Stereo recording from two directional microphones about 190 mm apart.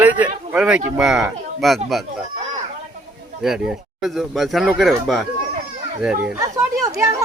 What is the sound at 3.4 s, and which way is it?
Speech, 5° right (ahead or behind).